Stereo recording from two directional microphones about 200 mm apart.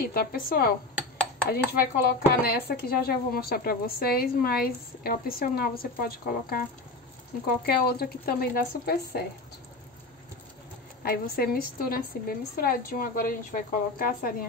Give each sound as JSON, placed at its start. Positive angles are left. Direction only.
{"t": 0.1, "sound": "speech", "side_deg": 45}
{"t": 11.0, "sound": "speech", "side_deg": 50}